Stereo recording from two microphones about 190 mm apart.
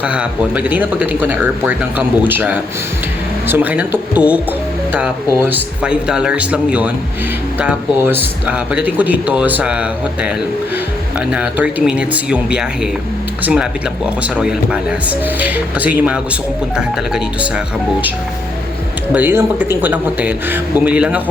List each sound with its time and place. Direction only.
0.0 s speech: 5° right (ahead or behind)
19.1 s speech: 10° right (ahead or behind)